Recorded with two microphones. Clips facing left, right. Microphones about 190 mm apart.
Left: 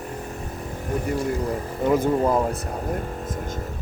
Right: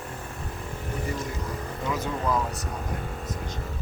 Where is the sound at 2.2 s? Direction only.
40° left (ahead or behind).